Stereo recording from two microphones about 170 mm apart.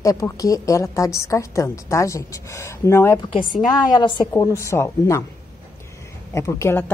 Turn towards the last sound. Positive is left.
turn(degrees=15)  # may be behind; listen again after turning